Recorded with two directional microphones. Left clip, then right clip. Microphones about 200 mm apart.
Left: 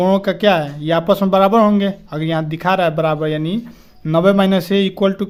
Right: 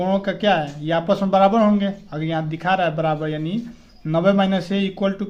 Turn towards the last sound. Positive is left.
turn(degrees=45)  # may be behind; listen again after turning